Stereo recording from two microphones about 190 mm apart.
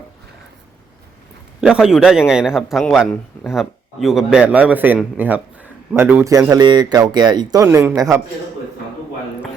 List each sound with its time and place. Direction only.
1.6 s speech: 5° right (ahead or behind)